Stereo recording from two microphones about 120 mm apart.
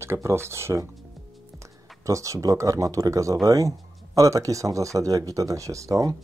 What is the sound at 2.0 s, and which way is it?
Speech, 25° right (ahead or behind).